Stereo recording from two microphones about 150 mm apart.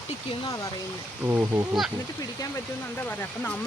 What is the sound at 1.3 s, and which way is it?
Speech, 20° right (ahead or behind).